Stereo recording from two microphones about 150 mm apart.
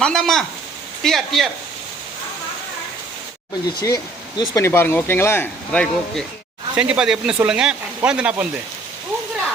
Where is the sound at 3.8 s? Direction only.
25° left (ahead or behind).